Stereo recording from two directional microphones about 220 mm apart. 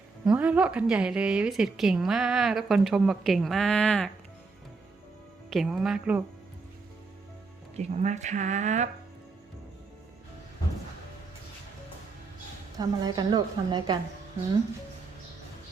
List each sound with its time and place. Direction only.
0.3 s a woman's voice: 5° right (ahead or behind)
5.5 s a woman's voice: centre (ahead or behind)
7.8 s speech: 30° right (ahead or behind)
12.8 s a woman's voice: 20° right (ahead or behind)